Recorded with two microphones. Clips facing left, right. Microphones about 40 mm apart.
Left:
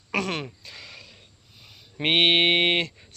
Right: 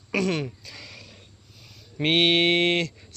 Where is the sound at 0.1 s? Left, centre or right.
Left.